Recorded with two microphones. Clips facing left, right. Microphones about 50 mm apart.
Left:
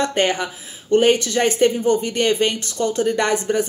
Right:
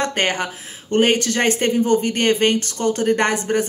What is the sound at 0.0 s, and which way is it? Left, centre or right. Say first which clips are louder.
Speech: left 1 dB; right.